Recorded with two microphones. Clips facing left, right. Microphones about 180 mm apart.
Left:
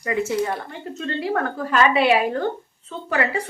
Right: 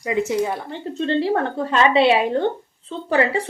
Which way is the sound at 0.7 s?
30° right (ahead or behind).